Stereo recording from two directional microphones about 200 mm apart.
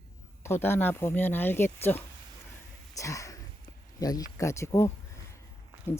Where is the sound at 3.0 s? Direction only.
15° left (ahead or behind).